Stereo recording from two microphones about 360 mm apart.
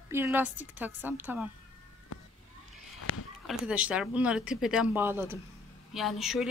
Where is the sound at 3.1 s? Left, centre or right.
Left.